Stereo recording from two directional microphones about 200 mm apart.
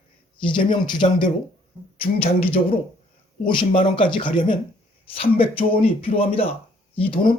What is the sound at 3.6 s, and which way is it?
Speech, 25° left (ahead or behind).